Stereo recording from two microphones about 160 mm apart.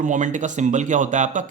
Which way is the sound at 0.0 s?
50° right (ahead or behind).